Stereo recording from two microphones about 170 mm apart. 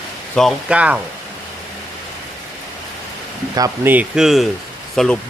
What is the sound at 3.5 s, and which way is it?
Speech, 15° right (ahead or behind).